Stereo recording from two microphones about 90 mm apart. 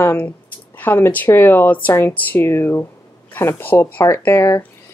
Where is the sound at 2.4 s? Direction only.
30° left (ahead or behind).